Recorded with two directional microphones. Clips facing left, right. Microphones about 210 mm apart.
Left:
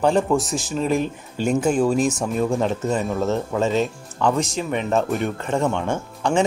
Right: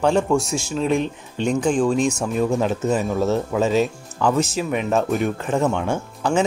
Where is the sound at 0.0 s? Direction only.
Centre (ahead or behind).